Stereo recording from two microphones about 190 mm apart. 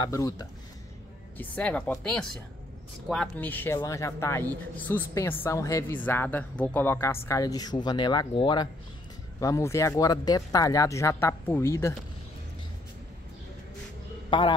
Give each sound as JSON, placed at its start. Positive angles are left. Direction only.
{"t": 0.0, "sound": "speech", "side_deg": 15}
{"t": 14.3, "sound": "speech", "side_deg": 25}